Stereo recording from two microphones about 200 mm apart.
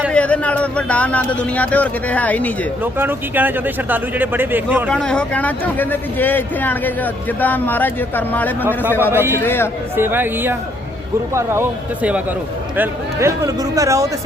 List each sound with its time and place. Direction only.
0.1 s speech: 5° left (ahead or behind)
2.8 s speech: 10° right (ahead or behind)
4.9 s a man's voice: 5° left (ahead or behind)
8.6 s speech: 10° right (ahead or behind)
9.4 s a man's voice: 10° left (ahead or behind)
9.9 s speech: 10° right (ahead or behind)
12.7 s speech: 10° right (ahead or behind)